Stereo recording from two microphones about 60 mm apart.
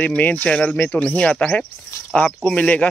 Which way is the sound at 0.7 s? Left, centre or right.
Left.